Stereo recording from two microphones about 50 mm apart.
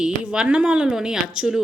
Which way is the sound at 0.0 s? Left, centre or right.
Centre.